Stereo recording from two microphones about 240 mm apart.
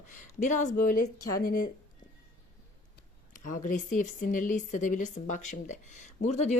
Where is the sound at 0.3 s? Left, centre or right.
Left.